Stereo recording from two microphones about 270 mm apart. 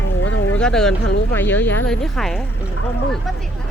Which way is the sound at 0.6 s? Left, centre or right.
Centre.